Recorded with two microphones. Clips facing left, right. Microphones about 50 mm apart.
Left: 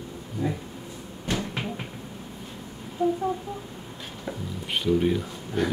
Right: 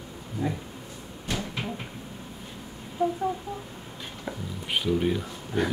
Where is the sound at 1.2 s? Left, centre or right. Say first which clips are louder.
Left 3 dB; left.